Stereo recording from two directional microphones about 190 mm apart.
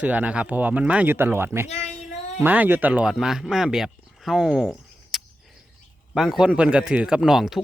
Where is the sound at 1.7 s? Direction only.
35° left (ahead or behind).